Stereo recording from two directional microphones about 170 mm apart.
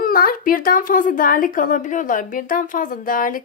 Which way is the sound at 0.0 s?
60° left (ahead or behind).